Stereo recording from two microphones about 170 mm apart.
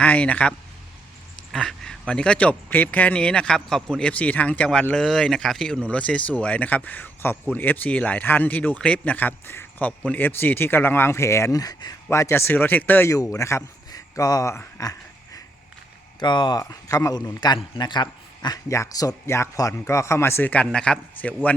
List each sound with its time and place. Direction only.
0.0 s speech: 10° left (ahead or behind)
1.5 s a man's voice: 5° left (ahead or behind)